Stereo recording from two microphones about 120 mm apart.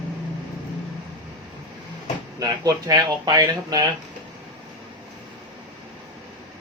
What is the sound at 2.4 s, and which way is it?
Speech, 35° right (ahead or behind).